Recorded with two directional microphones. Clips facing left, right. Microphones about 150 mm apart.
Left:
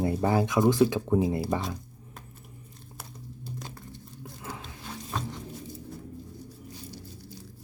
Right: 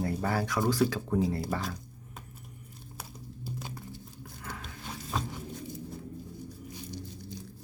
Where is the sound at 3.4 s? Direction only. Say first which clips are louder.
Even; 5° right (ahead or behind).